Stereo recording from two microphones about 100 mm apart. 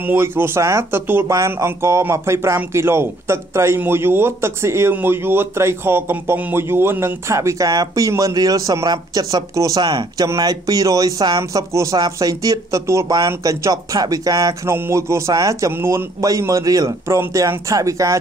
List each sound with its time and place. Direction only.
0.0 s a man's voice: 20° right (ahead or behind)
14.7 s a man's voice: 25° right (ahead or behind)